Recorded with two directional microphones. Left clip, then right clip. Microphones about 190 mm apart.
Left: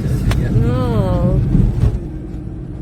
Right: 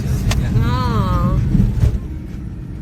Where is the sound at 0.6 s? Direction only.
15° left (ahead or behind).